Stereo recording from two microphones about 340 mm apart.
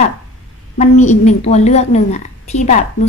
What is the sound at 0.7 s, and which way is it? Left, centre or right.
A woman's voice, left.